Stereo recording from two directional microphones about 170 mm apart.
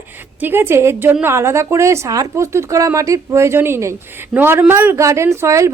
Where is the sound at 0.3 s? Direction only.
10° right (ahead or behind).